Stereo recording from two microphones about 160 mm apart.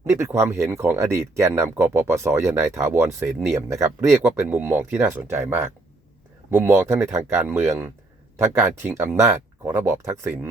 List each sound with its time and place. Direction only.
0.0 s speech: 15° right (ahead or behind)
9.0 s speech: 20° right (ahead or behind)